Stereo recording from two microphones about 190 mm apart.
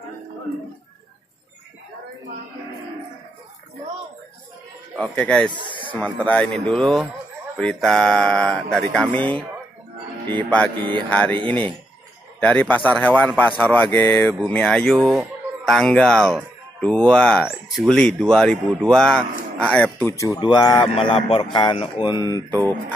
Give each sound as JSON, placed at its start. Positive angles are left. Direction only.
{"t": 4.9, "sound": "a man's voice", "side_deg": 5}
{"t": 20.3, "sound": "speech", "side_deg": 20}